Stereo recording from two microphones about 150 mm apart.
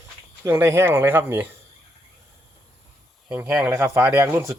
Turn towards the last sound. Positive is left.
turn(degrees=-15)  # may be behind; listen again after turning